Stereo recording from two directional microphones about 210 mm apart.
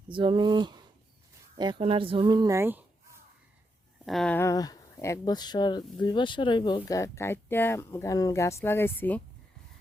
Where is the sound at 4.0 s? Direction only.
Centre (ahead or behind).